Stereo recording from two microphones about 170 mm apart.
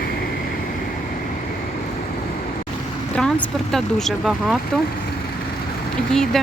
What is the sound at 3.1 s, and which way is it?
Speech, 5° left (ahead or behind).